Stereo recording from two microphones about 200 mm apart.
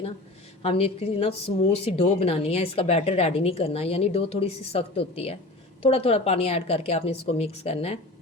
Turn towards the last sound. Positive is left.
turn(degrees=30)  # may be behind; listen again after turning